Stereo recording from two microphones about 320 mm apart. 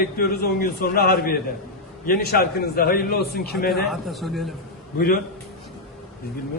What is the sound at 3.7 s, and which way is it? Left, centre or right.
Speech, centre.